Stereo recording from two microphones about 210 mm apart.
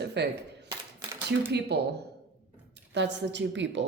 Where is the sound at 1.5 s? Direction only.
50° right (ahead or behind).